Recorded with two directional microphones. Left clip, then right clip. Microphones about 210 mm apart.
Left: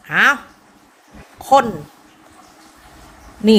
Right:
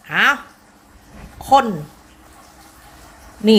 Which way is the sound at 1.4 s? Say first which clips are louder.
Left 1 dB; 20° left (ahead or behind).